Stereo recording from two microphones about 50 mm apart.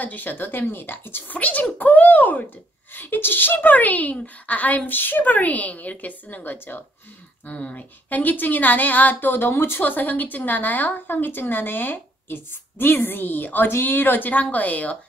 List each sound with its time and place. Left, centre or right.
0.0 s speech: left
1.3 s a woman's voice: left
7.4 s a woman's voice: left